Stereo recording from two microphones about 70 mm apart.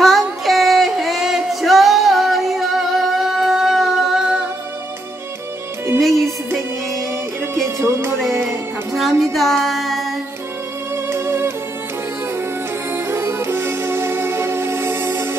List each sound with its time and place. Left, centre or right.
0.0 s music: centre
5.9 s music: centre
8.9 s music: centre
11.1 s music: right
12.9 s music: right